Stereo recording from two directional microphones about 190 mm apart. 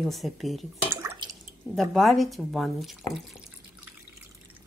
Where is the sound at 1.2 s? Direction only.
25° right (ahead or behind).